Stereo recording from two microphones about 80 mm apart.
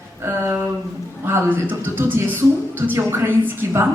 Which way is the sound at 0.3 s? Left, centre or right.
Right.